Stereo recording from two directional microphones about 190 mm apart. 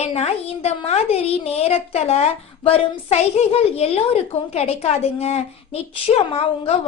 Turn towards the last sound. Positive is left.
turn(degrees=30)  # may be behind; listen again after turning